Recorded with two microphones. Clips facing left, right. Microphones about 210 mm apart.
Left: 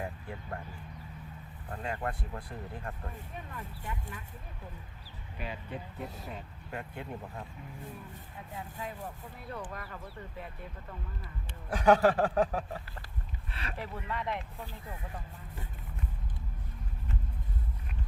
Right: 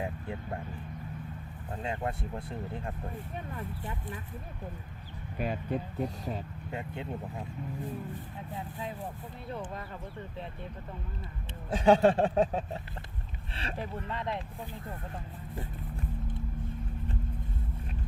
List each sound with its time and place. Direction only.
0.0 s a sound: 25° right (ahead or behind)
1.7 s speech: 25° right (ahead or behind)
5.4 s speech: 45° right (ahead or behind)
6.7 s speech: 25° right (ahead or behind)
9.5 s speech: 25° right (ahead or behind)
11.7 s speech: 25° right (ahead or behind)